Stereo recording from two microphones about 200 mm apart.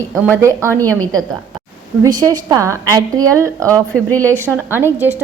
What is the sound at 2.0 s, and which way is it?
A woman's voice, 20° right (ahead or behind).